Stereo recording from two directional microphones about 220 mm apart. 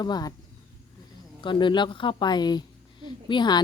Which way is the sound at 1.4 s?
20° left (ahead or behind).